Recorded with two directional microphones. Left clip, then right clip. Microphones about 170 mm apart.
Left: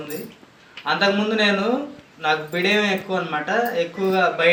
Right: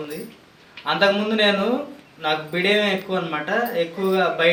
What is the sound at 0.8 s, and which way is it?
Speech, 15° right (ahead or behind).